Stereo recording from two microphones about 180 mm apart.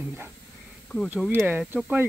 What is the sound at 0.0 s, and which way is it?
Speech, 10° right (ahead or behind).